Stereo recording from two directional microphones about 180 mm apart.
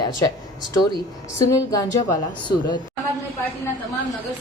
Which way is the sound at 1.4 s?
15° left (ahead or behind).